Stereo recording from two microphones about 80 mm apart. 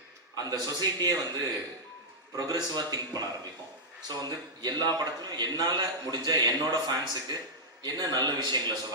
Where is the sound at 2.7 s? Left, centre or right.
Right.